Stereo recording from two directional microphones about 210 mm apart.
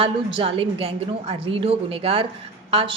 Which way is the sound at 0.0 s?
25° right (ahead or behind).